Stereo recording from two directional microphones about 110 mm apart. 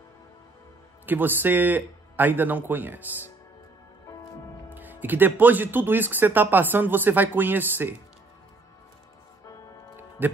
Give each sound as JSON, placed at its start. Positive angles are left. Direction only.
{"t": 1.0, "sound": "speech", "side_deg": -15}
{"t": 4.7, "sound": "speech", "side_deg": -15}
{"t": 9.9, "sound": "music", "side_deg": -15}